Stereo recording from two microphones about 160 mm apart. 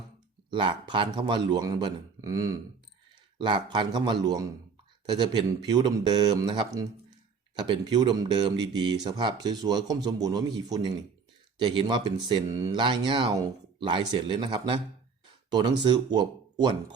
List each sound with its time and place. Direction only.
0.5 s speech: 30° right (ahead or behind)